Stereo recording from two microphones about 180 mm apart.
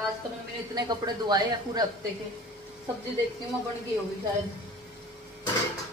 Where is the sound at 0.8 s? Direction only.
20° right (ahead or behind).